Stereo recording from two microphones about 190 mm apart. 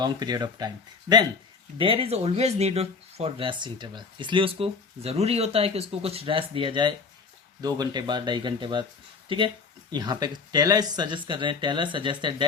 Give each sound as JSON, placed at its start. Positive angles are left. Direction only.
{"t": 0.0, "sound": "speech", "side_deg": -20}
{"t": 1.8, "sound": "speech", "side_deg": -30}